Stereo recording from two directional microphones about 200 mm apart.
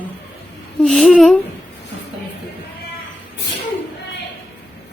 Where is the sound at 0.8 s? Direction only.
Centre (ahead or behind).